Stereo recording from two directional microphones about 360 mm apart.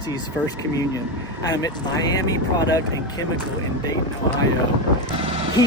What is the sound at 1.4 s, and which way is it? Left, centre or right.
Speech, centre.